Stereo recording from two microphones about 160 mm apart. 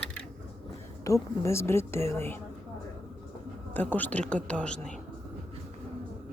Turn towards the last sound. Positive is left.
turn(degrees=5)  # may be behind; listen again after turning